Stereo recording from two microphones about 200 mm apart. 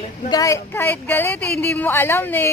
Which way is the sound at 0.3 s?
15° left (ahead or behind).